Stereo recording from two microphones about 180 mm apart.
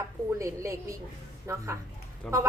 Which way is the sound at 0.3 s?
15° right (ahead or behind).